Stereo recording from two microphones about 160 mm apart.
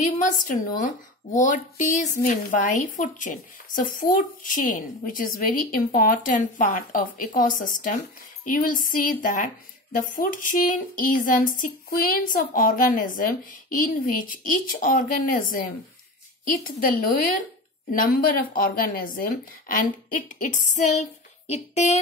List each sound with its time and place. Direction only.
0.0 s a woman's voice: 50° left (ahead or behind)